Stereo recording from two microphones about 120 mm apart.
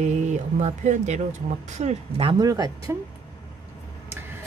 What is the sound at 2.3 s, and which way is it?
Speech, 35° right (ahead or behind).